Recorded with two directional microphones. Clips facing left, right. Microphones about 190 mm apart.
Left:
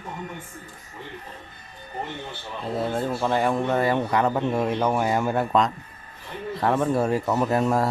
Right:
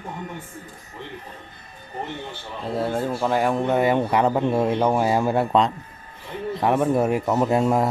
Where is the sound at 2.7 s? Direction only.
10° right (ahead or behind); by 5.7 s 30° right (ahead or behind).